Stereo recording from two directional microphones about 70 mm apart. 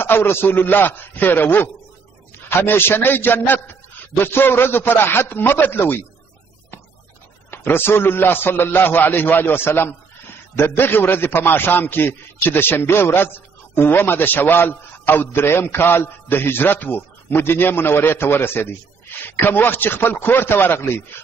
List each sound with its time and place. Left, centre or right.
0.0 s a man's voice: left
7.5 s a man's voice: left